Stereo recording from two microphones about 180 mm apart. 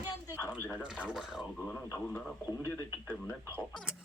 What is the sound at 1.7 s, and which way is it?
Speech, 15° left (ahead or behind).